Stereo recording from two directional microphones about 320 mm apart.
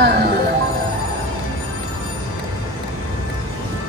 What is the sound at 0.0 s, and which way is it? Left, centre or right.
Music, right.